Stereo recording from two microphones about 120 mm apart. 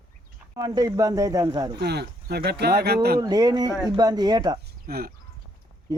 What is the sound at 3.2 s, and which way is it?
A man's voice, 30° right (ahead or behind).